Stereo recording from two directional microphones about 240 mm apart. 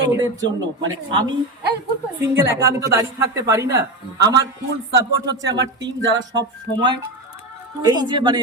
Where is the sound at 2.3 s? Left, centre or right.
Centre.